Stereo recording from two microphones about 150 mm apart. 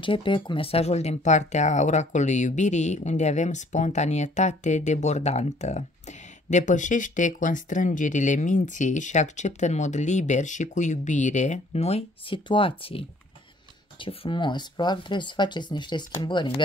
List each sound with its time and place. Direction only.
0.0 s speech: 35° left (ahead or behind)